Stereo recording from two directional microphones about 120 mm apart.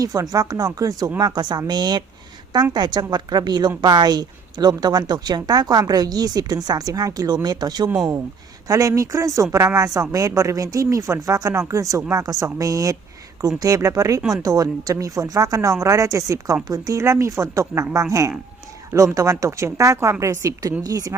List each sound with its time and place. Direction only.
0.0 s a woman's voice: 30° right (ahead or behind)
7.9 s speech: 5° right (ahead or behind)
8.6 s speech: 25° right (ahead or behind)
14.2 s speech: 5° right (ahead or behind)
14.4 s speech: 30° right (ahead or behind)